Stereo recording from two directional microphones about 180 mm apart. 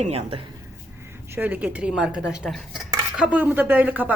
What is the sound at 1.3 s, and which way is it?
Dishes, 10° right (ahead or behind).